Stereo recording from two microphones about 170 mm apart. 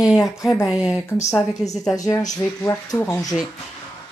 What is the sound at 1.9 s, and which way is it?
Speech, 20° left (ahead or behind).